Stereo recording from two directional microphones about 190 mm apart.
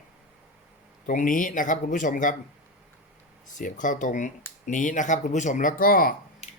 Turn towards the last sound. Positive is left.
turn(degrees=50)  # may be behind; listen again after turning